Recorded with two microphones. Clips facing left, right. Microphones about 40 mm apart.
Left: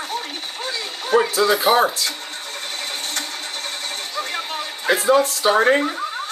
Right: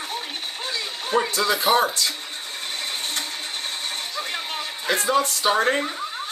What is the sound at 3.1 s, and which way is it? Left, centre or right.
Vehicle, centre.